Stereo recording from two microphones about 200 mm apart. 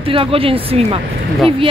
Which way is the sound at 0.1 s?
25° right (ahead or behind).